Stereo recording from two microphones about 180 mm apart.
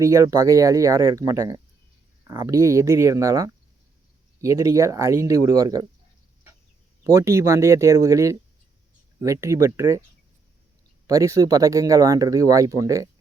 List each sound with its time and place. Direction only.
0.0 s speech: 15° right (ahead or behind)
7.0 s speech: 15° right (ahead or behind)
11.0 s speech: 20° right (ahead or behind)